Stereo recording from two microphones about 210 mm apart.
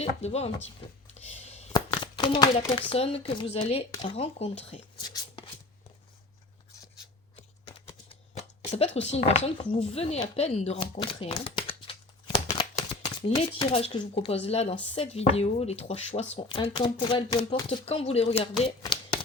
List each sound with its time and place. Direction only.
0.0 s speech: 30° left (ahead or behind)
1.7 s speech: 20° left (ahead or behind)
9.0 s speech: 30° left (ahead or behind)
18.8 s a sound: 20° left (ahead or behind)